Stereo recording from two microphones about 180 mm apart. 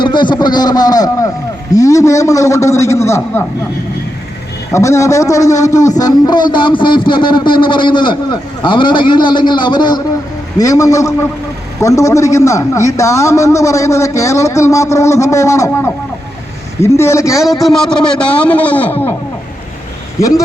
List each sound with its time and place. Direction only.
0.0 s a man's voice: 25° left (ahead or behind)
4.7 s a man's voice: 15° left (ahead or behind)
17.6 s a man's voice: centre (ahead or behind)
20.2 s a man's voice: 15° left (ahead or behind)